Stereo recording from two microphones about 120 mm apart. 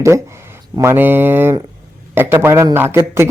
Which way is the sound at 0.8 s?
20° right (ahead or behind).